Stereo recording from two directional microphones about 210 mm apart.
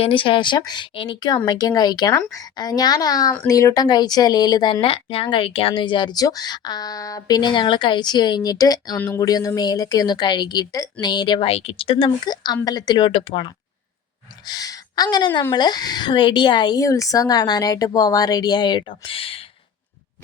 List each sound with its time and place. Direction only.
0.0 s a woman's voice: 25° left (ahead or behind)